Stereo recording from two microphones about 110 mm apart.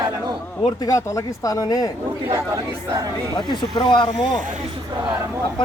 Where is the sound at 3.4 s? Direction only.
45° left (ahead or behind).